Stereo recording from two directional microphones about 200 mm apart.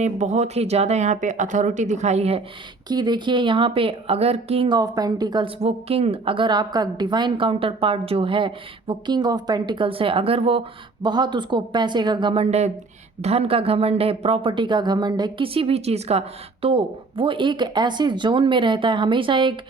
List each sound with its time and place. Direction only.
0.0 s speech: 35° right (ahead or behind)
2.9 s speech: 20° right (ahead or behind)